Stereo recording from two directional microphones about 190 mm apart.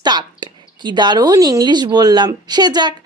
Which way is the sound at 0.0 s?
25° right (ahead or behind).